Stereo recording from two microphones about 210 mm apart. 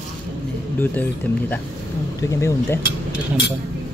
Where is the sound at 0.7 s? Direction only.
10° left (ahead or behind).